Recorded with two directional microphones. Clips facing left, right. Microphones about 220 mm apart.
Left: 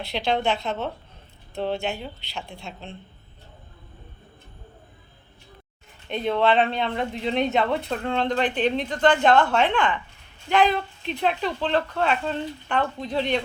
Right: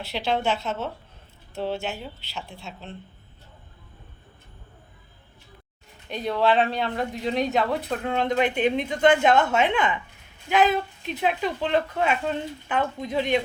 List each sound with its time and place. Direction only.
0.0 s speech: 5° right (ahead or behind)
6.4 s speech: centre (ahead or behind)